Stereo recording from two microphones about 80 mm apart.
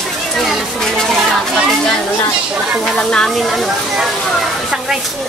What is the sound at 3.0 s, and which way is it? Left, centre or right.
Speech, centre.